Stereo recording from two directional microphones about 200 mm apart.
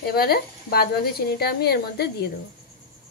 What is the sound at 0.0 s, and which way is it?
Speech, 50° left (ahead or behind).